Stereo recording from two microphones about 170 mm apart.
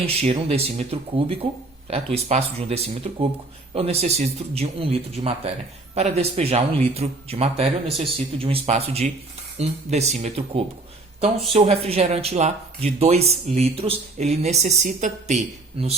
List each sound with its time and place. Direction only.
0.0 s speech: 35° right (ahead or behind)